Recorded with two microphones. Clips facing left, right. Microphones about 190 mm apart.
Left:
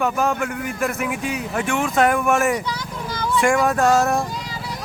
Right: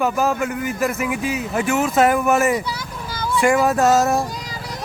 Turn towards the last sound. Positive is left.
turn(degrees=0)  # may be behind; listen again after turning